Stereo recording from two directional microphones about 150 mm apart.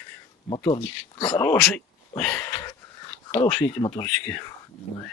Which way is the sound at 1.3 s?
5° left (ahead or behind).